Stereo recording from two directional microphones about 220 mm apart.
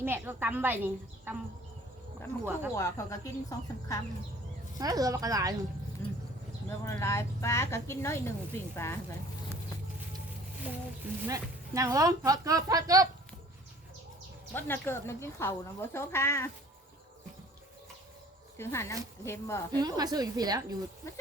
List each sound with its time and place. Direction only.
0.0 s speech: 10° right (ahead or behind)
2.4 s speech: 10° right (ahead or behind)
2.7 s speech: 15° left (ahead or behind)
4.8 s speech: 15° right (ahead or behind)
6.7 s speech: 10° left (ahead or behind)
11.0 s speech: 15° right (ahead or behind)
14.5 s speech: 10° left (ahead or behind)
18.5 s speech: 10° left (ahead or behind)
19.7 s speech: 20° right (ahead or behind)